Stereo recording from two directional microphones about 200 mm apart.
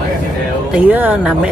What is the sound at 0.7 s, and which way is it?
Speech, 10° right (ahead or behind).